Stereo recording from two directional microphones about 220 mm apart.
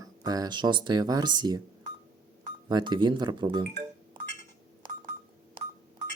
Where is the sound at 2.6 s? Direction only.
20° right (ahead or behind).